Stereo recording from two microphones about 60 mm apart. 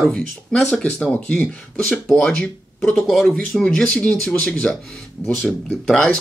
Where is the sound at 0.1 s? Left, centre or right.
Centre.